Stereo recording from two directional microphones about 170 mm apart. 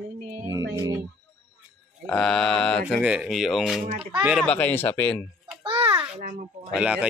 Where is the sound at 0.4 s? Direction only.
20° right (ahead or behind).